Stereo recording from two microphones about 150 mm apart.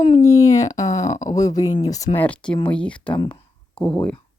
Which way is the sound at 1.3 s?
25° left (ahead or behind).